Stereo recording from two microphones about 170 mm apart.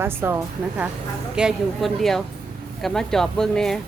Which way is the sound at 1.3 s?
Centre (ahead or behind).